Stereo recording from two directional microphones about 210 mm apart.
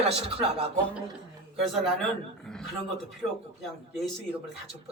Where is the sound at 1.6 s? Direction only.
Centre (ahead or behind).